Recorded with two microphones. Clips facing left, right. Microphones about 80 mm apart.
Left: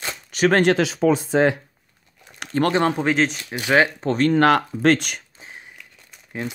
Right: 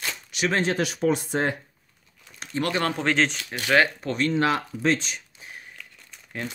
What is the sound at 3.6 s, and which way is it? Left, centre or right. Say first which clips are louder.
Speech: left 3 dB; left.